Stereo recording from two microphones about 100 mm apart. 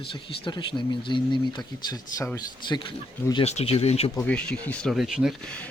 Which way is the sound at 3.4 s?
90° left.